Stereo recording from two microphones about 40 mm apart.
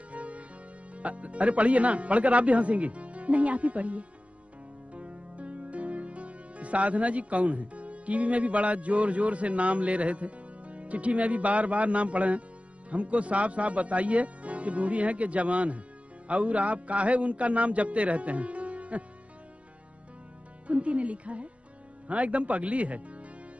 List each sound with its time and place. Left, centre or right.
0.1 s music: right
0.9 s speech: right
20.6 s speech: right